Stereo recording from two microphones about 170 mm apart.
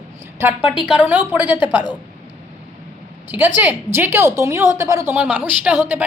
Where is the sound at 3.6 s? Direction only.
10° right (ahead or behind).